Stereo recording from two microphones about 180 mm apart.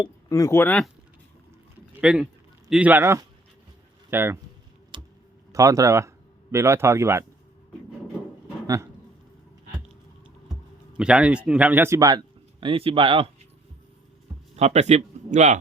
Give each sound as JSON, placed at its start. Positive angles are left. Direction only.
{"t": 0.0, "sound": "speech", "side_deg": 15}
{"t": 2.0, "sound": "speech", "side_deg": -5}
{"t": 4.9, "sound": "tick-tock", "side_deg": -25}
{"t": 5.5, "sound": "speech", "side_deg": -15}
{"t": 8.6, "sound": "speech", "side_deg": -20}
{"t": 10.9, "sound": "speech", "side_deg": -5}
{"t": 14.5, "sound": "speech", "side_deg": -35}